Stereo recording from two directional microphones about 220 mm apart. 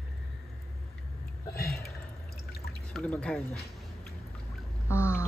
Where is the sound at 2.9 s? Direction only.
5° left (ahead or behind).